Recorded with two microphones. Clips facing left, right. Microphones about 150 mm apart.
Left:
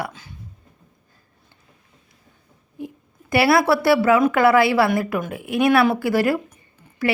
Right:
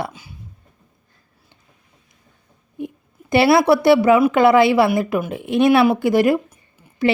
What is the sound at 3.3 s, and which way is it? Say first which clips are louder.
Speech: right 3 dB; 25° right (ahead or behind).